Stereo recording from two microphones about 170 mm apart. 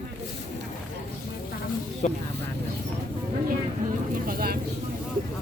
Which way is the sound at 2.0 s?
45° left (ahead or behind).